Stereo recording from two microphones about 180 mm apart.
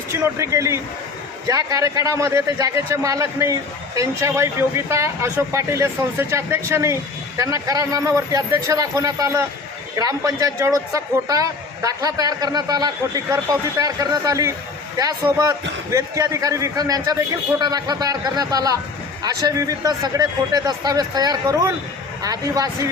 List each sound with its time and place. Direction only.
0.1 s a man's voice: 15° right (ahead or behind)